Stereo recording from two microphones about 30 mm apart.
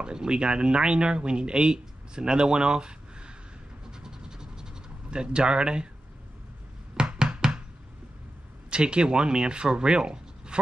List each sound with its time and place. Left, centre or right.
0.0 s speech: right
3.9 s scratch: right
7.0 s knock: right
8.6 s speech: right